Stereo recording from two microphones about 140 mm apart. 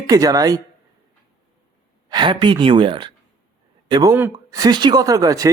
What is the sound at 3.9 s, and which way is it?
A woman's voice, 25° right (ahead or behind).